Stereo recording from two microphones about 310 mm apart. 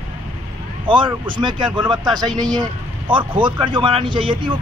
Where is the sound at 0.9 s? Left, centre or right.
Centre.